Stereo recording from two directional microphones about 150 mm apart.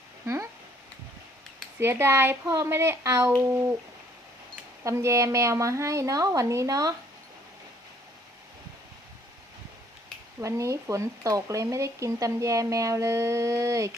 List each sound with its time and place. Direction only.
1.8 s speech: 15° right (ahead or behind)
4.8 s speech: 20° right (ahead or behind)
10.4 s speech: 20° right (ahead or behind)